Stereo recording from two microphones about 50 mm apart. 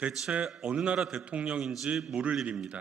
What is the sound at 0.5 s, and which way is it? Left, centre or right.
A man's voice, right.